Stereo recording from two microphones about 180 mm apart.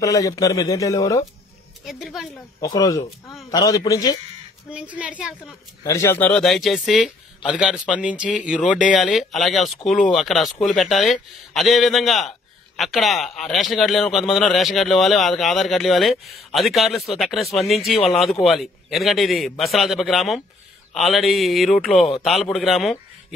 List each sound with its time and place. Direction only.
0.0 s speech: 20° left (ahead or behind)
1.9 s a man's voice: centre (ahead or behind)
2.6 s speech: 20° left (ahead or behind)
4.6 s speech: 5° right (ahead or behind)
5.9 s a man's voice: 15° left (ahead or behind); by 22.9 s centre (ahead or behind)